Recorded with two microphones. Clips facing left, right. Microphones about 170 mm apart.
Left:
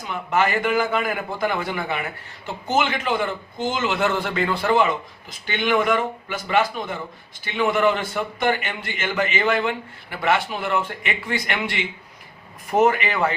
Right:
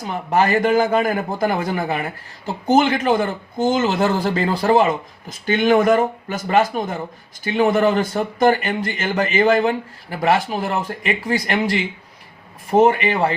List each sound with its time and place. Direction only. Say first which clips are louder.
0.0 s speech: right 3 dB; 35° right (ahead or behind)